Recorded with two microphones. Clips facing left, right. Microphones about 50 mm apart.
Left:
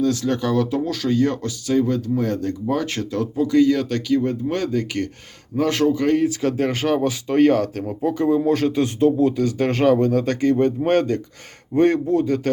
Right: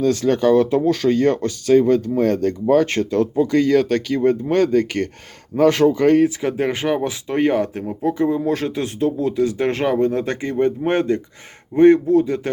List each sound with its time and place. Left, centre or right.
0.0 s speech: right
5.5 s speech: right
6.4 s speech: centre
7.9 s speech: centre
9.4 s speech: centre